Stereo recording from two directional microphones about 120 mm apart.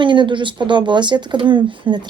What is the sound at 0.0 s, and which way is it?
A woman's voice, 40° right (ahead or behind).